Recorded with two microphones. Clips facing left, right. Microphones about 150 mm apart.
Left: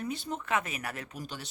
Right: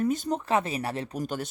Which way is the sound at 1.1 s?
45° right (ahead or behind).